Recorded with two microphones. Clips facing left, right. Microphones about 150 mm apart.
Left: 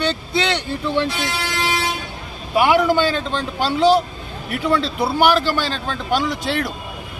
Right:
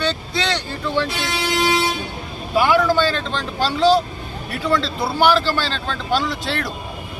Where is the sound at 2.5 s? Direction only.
20° left (ahead or behind).